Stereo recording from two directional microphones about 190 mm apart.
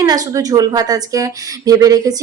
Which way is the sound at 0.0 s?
20° right (ahead or behind).